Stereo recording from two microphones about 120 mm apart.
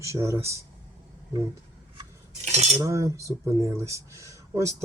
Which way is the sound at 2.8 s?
25° right (ahead or behind).